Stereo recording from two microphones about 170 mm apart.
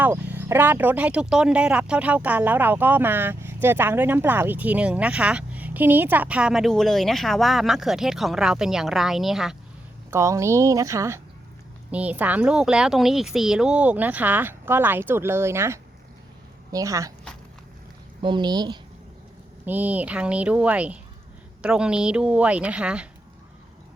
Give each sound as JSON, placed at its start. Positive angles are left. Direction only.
{"t": 0.0, "sound": "speech", "side_deg": -10}
{"t": 10.1, "sound": "speech", "side_deg": -15}
{"t": 18.2, "sound": "speech", "side_deg": -25}
{"t": 19.6, "sound": "speech", "side_deg": -10}